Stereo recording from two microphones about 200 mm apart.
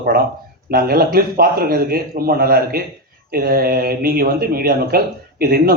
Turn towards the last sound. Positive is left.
turn(degrees=-50)  # may be behind; listen again after turning